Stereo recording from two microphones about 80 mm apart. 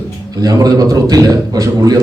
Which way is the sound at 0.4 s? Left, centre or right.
Right.